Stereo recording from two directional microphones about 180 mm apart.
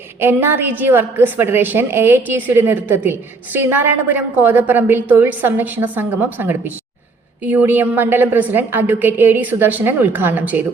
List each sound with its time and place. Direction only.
0.2 s a woman's voice: 10° right (ahead or behind)